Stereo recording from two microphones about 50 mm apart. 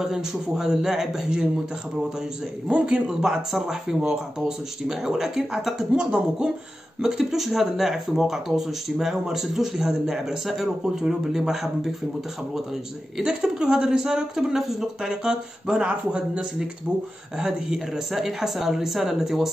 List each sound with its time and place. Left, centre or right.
0.0 s speech: centre
2.7 s speech: centre
13.2 s speech: centre